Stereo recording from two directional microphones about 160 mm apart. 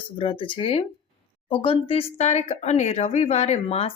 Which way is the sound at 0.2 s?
35° left (ahead or behind).